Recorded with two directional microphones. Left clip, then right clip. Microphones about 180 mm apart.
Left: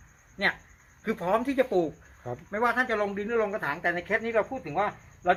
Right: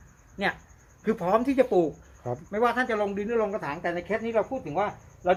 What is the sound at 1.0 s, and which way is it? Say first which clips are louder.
Speech: right 3 dB; 25° right (ahead or behind).